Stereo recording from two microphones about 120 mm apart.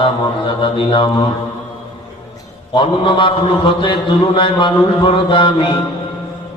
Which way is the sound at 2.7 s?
40° left (ahead or behind).